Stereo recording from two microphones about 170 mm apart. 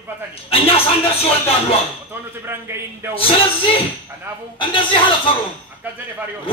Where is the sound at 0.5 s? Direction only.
35° left (ahead or behind).